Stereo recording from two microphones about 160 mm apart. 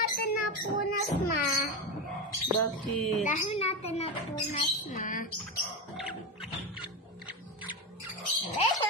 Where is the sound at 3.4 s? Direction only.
40° left (ahead or behind).